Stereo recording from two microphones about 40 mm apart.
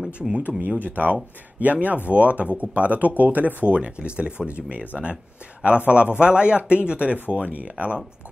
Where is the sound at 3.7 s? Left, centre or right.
Right.